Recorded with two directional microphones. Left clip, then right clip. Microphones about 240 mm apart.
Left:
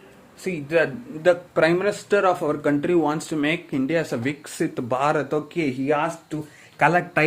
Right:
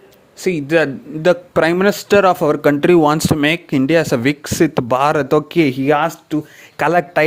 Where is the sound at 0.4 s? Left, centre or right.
Right.